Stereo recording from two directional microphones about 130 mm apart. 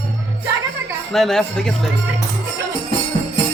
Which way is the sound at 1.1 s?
5° left (ahead or behind).